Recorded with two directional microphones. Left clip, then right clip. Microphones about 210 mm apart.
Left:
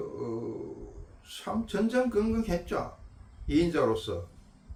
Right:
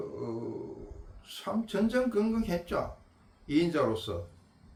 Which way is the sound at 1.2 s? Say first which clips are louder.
Even; 5° right (ahead or behind).